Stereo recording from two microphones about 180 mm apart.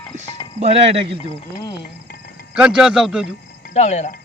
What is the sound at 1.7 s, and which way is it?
Music, 65° left (ahead or behind).